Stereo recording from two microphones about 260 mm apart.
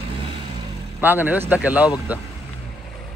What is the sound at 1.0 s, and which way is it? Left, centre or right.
Speech, centre.